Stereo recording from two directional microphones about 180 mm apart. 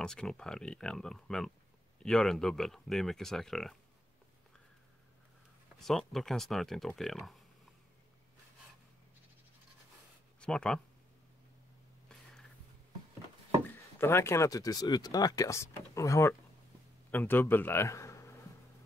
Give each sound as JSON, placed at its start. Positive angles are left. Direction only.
{"t": 0.0, "sound": "speech", "side_deg": 5}
{"t": 5.8, "sound": "speech", "side_deg": 0}
{"t": 10.4, "sound": "speech", "side_deg": 5}
{"t": 13.7, "sound": "a man's voice", "side_deg": 15}